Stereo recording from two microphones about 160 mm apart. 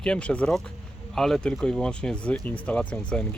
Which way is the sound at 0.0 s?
5° left (ahead or behind).